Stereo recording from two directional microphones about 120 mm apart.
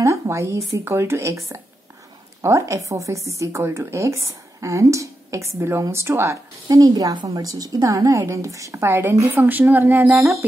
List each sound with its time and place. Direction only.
0.0 s a sound: 25° right (ahead or behind)
0.7 s a woman's voice: 20° right (ahead or behind)
2.4 s a woman's voice: 25° right (ahead or behind)